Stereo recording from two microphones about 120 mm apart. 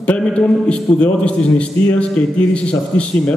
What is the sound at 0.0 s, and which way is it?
A man's voice, 10° left (ahead or behind).